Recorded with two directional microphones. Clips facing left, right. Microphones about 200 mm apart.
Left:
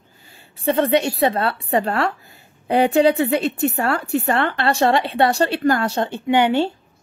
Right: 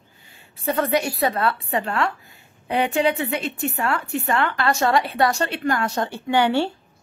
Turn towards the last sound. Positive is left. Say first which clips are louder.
# left 3 dB
turn(degrees=20)  # may be behind; listen again after turning